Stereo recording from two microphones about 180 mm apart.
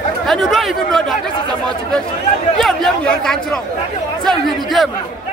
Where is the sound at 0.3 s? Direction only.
Centre (ahead or behind).